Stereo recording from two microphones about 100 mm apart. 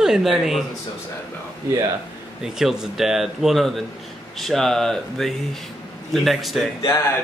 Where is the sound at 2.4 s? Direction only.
5° right (ahead or behind).